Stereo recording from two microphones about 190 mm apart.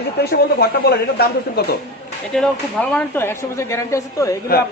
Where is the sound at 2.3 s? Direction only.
5° left (ahead or behind).